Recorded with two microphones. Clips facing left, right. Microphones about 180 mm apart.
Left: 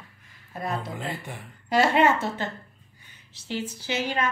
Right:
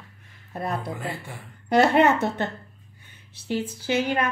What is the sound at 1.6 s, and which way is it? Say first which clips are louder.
Speech: right 3 dB; 60° right (ahead or behind).